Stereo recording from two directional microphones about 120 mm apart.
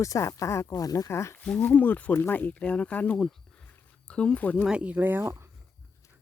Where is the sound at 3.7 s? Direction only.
15° left (ahead or behind).